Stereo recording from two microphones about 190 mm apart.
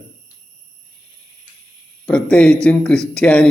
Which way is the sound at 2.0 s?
5° left (ahead or behind).